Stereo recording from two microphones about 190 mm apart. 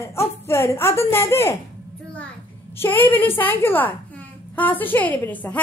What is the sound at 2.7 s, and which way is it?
A woman's voice, 10° left (ahead or behind).